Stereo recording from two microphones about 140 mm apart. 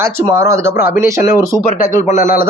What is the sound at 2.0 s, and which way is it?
Speech, 55° left (ahead or behind).